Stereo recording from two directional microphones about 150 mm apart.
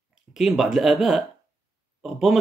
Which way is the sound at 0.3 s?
Centre (ahead or behind).